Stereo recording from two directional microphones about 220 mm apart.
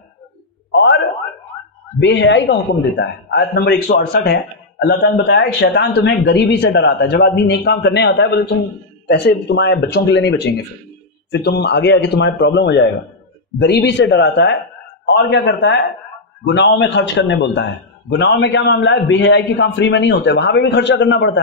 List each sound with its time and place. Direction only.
2.0 s a man's voice: 50° left (ahead or behind)